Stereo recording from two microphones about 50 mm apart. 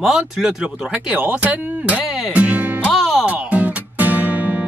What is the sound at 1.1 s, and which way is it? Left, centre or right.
Speech, right.